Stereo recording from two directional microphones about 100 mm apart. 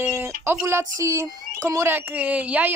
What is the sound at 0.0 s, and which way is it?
Speech, 20° right (ahead or behind).